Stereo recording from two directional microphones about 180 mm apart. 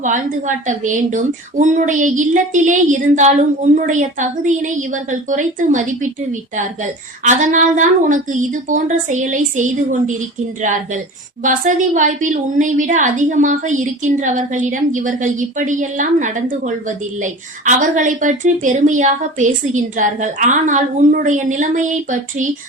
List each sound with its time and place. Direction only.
0.0 s a woman's voice: 45° right (ahead or behind)
7.3 s a woman's voice: 45° right (ahead or behind)